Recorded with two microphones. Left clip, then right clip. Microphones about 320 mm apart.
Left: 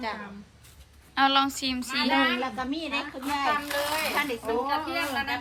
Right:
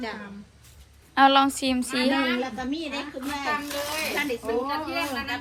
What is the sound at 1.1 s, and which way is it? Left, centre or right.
A woman's voice, centre.